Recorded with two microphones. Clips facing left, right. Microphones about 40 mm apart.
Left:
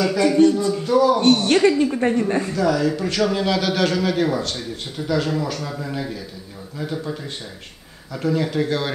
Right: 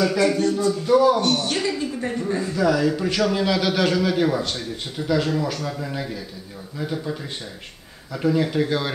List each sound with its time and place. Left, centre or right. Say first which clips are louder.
0.1 s a man's voice: left 1 dB; centre
0.4 s speech: left 7 dB; left
0.8 s a man's voice: right 1 dB; centre
1.2 s a man's voice: left 7 dB; left
2.5 s a man's voice: right 3 dB; centre